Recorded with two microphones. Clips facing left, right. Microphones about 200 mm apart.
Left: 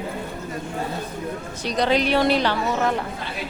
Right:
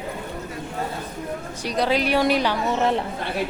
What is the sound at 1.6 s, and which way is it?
Speech, 10° right (ahead or behind).